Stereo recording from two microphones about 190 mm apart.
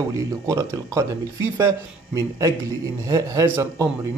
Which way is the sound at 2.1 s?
20° right (ahead or behind).